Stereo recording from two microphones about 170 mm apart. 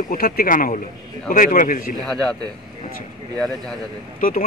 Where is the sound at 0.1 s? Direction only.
55° left (ahead or behind).